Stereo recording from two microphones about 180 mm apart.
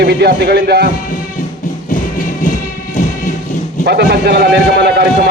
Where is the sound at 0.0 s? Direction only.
65° right (ahead or behind).